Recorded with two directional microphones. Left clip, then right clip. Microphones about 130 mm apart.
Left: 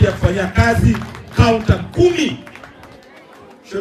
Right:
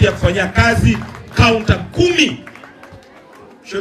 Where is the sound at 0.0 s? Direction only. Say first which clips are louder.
Right 2 dB; 20° right (ahead or behind).